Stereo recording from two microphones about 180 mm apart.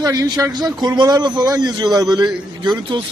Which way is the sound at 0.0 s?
20° right (ahead or behind).